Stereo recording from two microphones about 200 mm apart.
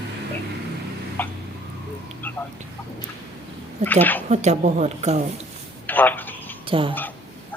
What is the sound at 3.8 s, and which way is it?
Speech, 10° left (ahead or behind).